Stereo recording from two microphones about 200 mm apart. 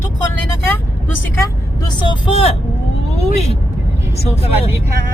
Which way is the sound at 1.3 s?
20° left (ahead or behind).